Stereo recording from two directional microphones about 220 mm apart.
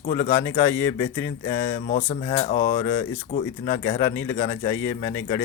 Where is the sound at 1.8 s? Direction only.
30° left (ahead or behind).